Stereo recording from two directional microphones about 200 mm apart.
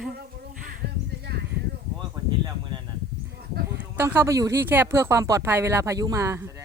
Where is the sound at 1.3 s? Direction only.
55° right (ahead or behind).